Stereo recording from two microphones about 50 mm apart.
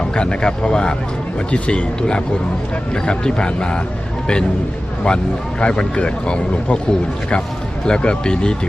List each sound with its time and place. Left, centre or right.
0.1 s speech: centre
5.0 s speech: centre
7.9 s speech: centre